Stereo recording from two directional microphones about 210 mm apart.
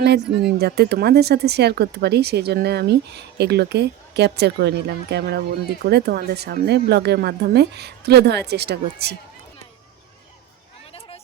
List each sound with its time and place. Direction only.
0.4 s speech: 50° right (ahead or behind)